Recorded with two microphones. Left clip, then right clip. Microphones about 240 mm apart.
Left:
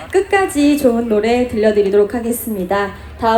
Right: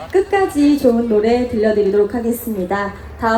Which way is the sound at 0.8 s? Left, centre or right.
Centre.